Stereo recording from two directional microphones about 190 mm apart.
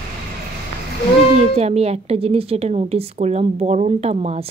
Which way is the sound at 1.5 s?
35° right (ahead or behind).